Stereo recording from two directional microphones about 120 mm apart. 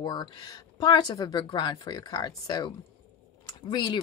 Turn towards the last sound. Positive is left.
turn(degrees=35)  # may be behind; listen again after turning